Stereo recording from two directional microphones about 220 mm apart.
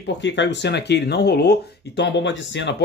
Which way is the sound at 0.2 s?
55° left (ahead or behind).